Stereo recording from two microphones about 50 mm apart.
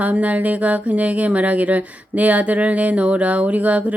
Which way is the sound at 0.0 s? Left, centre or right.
Right.